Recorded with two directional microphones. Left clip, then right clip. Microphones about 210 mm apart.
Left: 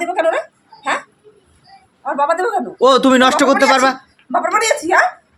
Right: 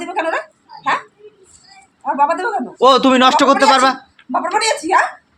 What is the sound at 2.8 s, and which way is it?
A man's voice, 10° left (ahead or behind).